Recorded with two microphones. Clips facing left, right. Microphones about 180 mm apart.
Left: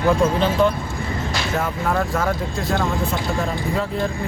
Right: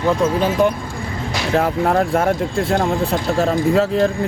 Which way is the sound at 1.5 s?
65° right (ahead or behind).